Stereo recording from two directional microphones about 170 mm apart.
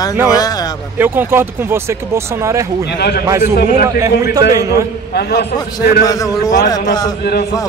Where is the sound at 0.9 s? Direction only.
10° right (ahead or behind).